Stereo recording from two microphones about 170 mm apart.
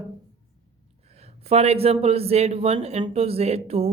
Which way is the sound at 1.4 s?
35° right (ahead or behind).